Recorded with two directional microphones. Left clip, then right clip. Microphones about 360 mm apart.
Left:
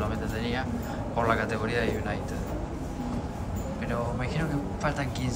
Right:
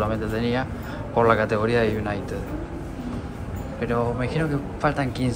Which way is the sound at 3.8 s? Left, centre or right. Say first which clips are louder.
Right 8 dB; centre.